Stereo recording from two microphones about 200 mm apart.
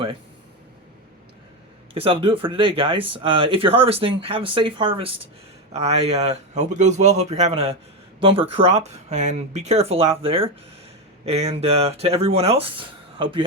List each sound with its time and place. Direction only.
1.9 s speech: 25° right (ahead or behind)